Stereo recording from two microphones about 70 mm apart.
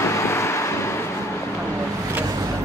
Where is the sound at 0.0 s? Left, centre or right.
Left.